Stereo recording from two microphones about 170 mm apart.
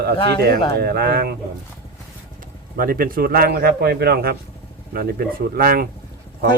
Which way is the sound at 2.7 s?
60° right (ahead or behind).